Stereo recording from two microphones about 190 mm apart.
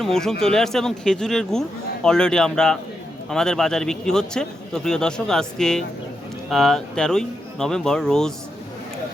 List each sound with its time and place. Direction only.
0.0 s a man's voice: centre (ahead or behind)